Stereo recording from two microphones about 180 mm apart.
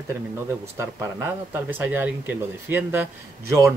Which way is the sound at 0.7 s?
15° right (ahead or behind).